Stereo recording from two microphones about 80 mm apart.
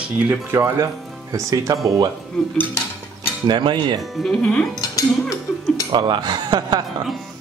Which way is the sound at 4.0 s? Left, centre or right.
Centre.